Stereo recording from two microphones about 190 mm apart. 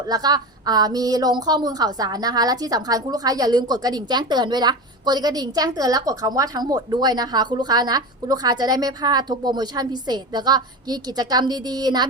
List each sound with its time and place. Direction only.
0.1 s a woman's voice: 20° right (ahead or behind)